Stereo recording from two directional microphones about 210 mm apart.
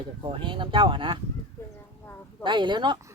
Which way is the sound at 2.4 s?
20° right (ahead or behind).